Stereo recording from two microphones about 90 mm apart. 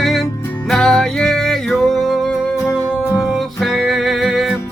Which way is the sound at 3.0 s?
30° left (ahead or behind).